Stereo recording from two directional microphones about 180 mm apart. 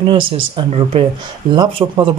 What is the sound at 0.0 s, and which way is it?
Speech, 30° right (ahead or behind).